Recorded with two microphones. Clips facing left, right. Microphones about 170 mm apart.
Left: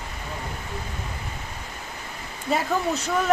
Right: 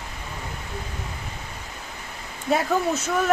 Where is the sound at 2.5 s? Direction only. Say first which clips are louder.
Right 2 dB; centre (ahead or behind).